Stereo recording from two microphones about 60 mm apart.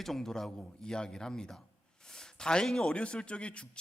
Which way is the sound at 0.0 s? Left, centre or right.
Centre.